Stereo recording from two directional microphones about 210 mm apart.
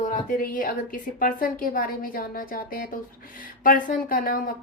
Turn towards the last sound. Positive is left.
turn(degrees=40)  # may be behind; listen again after turning